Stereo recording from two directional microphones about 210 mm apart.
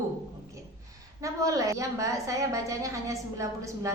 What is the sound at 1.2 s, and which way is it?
A woman's voice, 15° right (ahead or behind).